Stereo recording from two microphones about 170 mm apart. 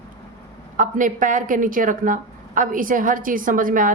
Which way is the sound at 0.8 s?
50° right (ahead or behind).